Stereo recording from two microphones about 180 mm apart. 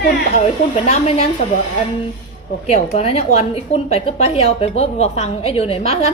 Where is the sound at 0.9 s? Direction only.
35° left (ahead or behind).